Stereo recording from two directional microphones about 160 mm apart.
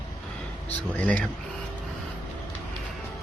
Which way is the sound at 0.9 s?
10° left (ahead or behind).